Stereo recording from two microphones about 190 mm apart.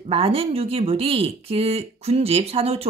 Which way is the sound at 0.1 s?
30° right (ahead or behind).